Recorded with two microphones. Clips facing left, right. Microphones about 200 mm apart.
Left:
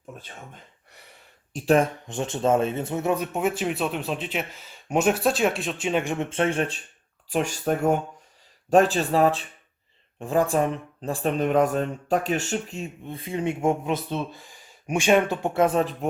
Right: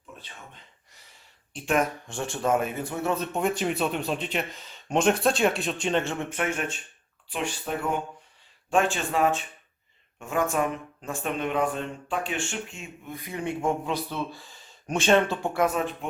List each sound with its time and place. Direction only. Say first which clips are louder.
0.2 s a sound: left 4 dB; 50° left (ahead or behind)
1.5 s speech: left 5 dB; 35° left (ahead or behind)
2.0 s speech: left 3 dB; 20° left (ahead or behind)
6.2 s speech: left 5 dB; 30° left (ahead or behind)